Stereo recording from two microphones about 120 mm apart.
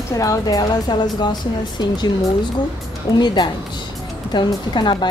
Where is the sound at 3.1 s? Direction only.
40° left (ahead or behind).